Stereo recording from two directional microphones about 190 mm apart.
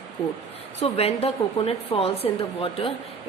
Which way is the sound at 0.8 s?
30° left (ahead or behind).